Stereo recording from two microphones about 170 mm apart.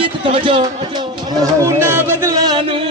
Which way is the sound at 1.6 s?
15° right (ahead or behind).